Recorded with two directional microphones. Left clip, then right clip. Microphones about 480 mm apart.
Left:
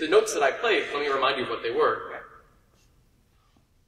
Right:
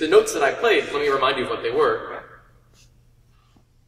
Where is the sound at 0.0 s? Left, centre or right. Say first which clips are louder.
Right 4 dB; right.